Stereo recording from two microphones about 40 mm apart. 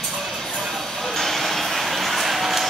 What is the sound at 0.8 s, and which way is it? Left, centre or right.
Vehicle, centre.